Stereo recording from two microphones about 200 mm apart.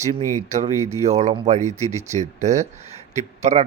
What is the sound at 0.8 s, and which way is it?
Speech, 15° right (ahead or behind).